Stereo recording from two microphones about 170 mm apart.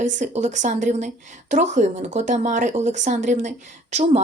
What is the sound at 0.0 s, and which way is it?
A woman's voice, 45° right (ahead or behind).